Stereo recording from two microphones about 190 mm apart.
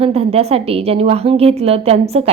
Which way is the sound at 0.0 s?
35° right (ahead or behind).